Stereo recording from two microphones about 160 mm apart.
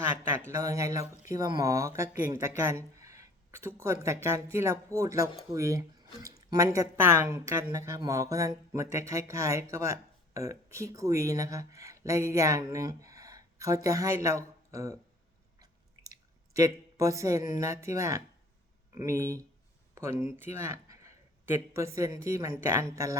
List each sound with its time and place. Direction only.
0.3 s speech: 15° right (ahead or behind)
16.6 s a man's voice: 20° right (ahead or behind)